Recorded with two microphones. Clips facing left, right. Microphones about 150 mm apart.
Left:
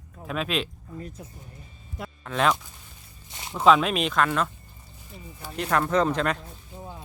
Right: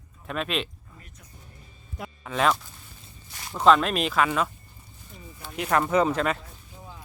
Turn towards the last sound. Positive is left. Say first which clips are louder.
# even
turn(degrees=-5)  # may be behind; listen again after turning